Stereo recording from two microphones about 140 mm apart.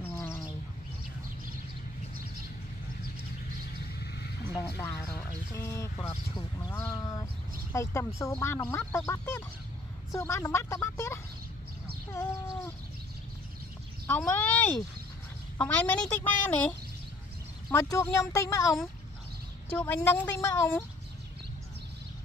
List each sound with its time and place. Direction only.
0.0 s bird: 15° left (ahead or behind)
4.7 s speech: 10° left (ahead or behind)
12.1 s a sound: 20° left (ahead or behind)
14.0 s a woman's voice: 15° left (ahead or behind)
17.6 s speech: 25° left (ahead or behind)
19.7 s a woman's voice: 15° left (ahead or behind)